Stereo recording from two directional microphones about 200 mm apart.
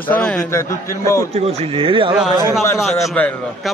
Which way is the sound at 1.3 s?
30° right (ahead or behind).